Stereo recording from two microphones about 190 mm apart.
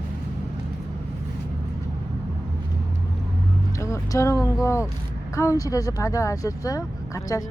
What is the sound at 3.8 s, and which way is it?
Speech, 15° left (ahead or behind).